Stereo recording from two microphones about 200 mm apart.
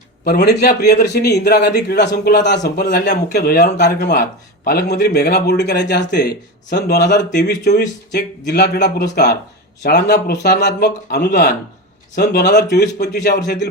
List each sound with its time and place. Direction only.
0.3 s speech: 55° left (ahead or behind)